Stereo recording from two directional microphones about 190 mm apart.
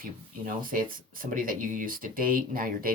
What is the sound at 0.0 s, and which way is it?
Speech, 45° right (ahead or behind).